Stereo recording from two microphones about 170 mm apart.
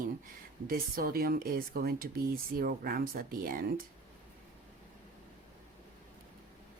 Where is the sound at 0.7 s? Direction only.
60° right (ahead or behind).